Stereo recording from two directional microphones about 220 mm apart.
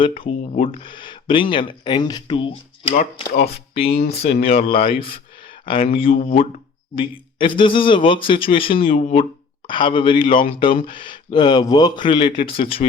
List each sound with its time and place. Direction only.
0.2 s speech: 25° left (ahead or behind)
4.3 s speech: 45° left (ahead or behind)
5.6 s speech: 25° left (ahead or behind)
6.1 s speech: 40° left (ahead or behind)
6.9 s speech: 25° left (ahead or behind)